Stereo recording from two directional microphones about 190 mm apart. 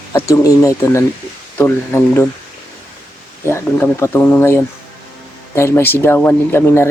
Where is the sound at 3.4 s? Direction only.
15° left (ahead or behind).